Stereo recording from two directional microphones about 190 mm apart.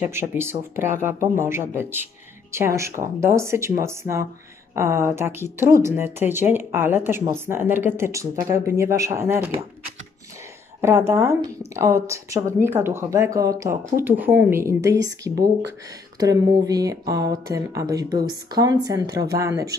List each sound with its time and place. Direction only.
0.0 s a woman's voice: 10° right (ahead or behind)
10.8 s a woman's voice: 15° right (ahead or behind)